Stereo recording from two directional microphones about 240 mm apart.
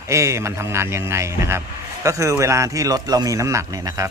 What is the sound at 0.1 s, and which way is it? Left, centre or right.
Speech, centre.